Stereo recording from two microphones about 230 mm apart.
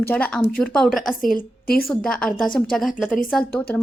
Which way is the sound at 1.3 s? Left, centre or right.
Left.